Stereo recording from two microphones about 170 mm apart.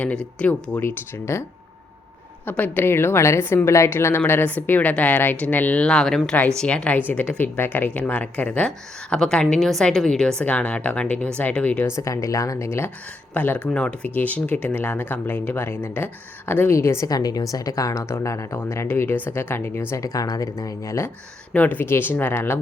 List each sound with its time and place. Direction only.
0.0 s speech: 5° left (ahead or behind)
2.5 s speech: 10° left (ahead or behind)